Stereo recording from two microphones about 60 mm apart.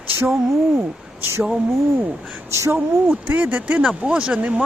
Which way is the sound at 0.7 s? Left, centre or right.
Right.